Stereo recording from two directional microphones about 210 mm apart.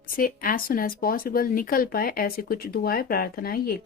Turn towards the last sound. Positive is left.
turn(degrees=45)  # may be behind; listen again after turning